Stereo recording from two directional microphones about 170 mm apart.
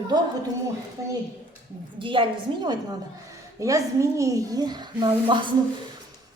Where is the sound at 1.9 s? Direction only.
30° right (ahead or behind).